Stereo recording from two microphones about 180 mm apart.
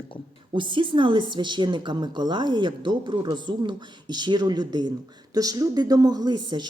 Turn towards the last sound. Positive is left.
turn(degrees=-25)  # may be behind; listen again after turning